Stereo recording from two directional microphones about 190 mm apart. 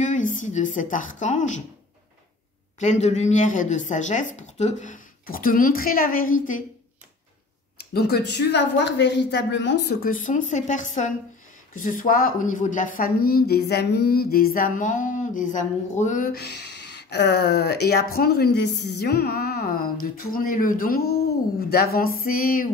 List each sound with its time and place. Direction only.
0.0 s a woman's voice: 40° left (ahead or behind)
2.8 s speech: 40° left (ahead or behind)
7.7 s speech: 55° left (ahead or behind)
10.0 s speech: 45° left (ahead or behind)